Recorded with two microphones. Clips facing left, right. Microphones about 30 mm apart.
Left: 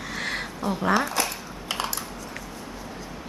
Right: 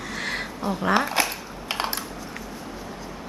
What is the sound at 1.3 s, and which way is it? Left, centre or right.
Typing, right.